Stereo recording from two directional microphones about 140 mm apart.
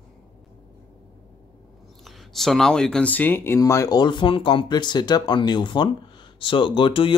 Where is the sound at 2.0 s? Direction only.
Centre (ahead or behind).